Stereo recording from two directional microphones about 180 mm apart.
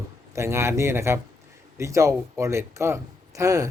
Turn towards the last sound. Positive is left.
turn(degrees=-15)  # may be behind; listen again after turning